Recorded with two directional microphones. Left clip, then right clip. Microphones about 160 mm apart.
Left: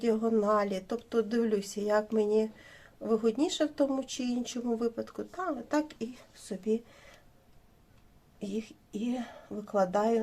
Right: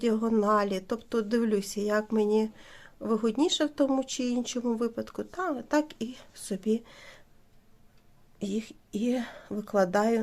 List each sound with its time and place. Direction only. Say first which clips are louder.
0.0 s speech: right 1 dB; 40° right (ahead or behind)
8.4 s a woman's voice: right 3 dB; 45° right (ahead or behind)